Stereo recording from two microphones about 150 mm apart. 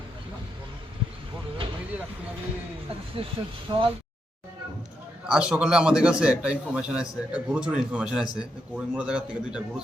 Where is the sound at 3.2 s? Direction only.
40° right (ahead or behind).